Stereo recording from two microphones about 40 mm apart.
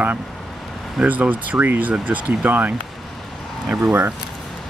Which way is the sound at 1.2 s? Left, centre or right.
Right.